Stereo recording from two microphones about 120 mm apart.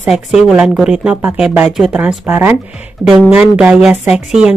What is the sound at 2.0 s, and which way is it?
Speech, 15° right (ahead or behind).